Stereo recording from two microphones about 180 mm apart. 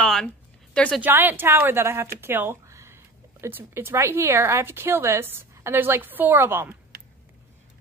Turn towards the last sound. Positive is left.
turn(degrees=-55)  # may be behind; listen again after turning